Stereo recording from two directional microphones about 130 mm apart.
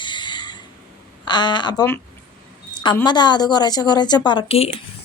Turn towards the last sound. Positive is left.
turn(degrees=50)  # may be behind; listen again after turning